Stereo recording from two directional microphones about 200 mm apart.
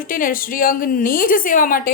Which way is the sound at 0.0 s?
45° left (ahead or behind).